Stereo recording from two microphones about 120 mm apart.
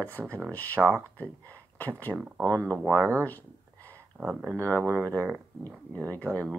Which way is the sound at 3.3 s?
15° left (ahead or behind).